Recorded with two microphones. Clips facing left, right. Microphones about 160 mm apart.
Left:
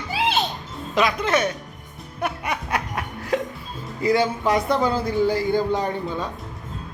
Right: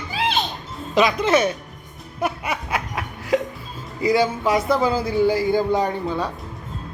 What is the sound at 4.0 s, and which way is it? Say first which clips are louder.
A man's voice: right 1 dB; 10° right (ahead or behind).